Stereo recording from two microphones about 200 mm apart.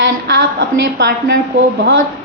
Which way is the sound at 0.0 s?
55° right (ahead or behind).